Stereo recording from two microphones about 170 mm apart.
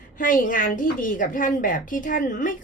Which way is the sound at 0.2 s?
50° left (ahead or behind).